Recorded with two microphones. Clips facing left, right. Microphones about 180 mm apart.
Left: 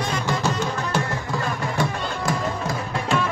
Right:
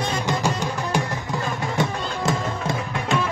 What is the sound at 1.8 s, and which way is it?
Music, 20° right (ahead or behind).